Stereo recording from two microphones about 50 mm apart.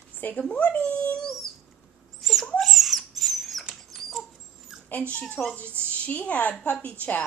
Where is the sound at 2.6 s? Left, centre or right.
Centre.